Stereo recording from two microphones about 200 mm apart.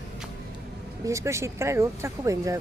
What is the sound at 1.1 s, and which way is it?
A woman's voice, 15° right (ahead or behind).